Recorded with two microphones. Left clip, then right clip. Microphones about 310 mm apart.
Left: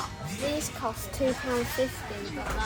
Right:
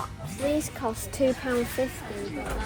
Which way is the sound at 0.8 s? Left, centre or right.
Right.